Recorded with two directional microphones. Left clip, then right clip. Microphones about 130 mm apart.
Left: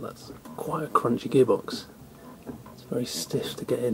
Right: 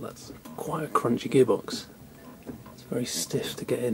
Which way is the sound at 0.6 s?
30° right (ahead or behind).